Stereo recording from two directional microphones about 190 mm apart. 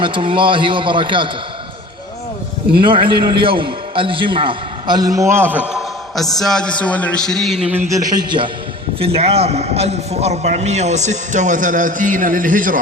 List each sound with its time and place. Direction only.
0.0 s a man's voice: 25° right (ahead or behind)
2.8 s a man's voice: 25° right (ahead or behind); by 7.7 s centre (ahead or behind)
7.9 s a man's voice: 20° right (ahead or behind); by 12.8 s 45° right (ahead or behind)